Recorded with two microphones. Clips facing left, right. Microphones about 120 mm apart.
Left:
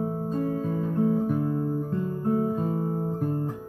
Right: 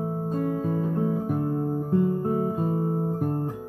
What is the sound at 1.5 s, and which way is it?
Music, 35° right (ahead or behind).